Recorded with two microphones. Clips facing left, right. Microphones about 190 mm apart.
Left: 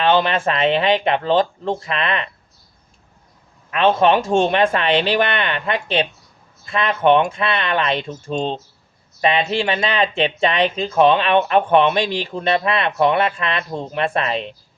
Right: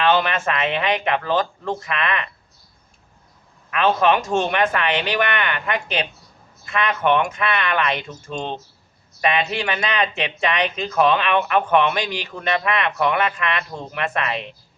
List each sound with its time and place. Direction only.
0.0 s speech: 30° left (ahead or behind)
3.7 s speech: 30° left (ahead or behind)